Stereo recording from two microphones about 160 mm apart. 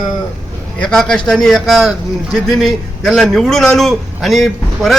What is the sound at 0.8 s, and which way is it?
A man's voice, 5° left (ahead or behind).